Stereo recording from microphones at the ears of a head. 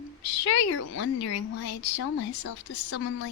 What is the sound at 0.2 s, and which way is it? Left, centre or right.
A woman's voice, left.